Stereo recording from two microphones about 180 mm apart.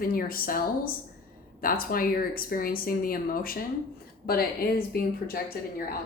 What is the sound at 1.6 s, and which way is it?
A woman's voice, 55° left (ahead or behind).